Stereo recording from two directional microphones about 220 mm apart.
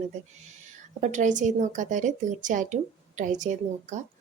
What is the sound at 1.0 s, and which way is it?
A woman's voice, 35° right (ahead or behind).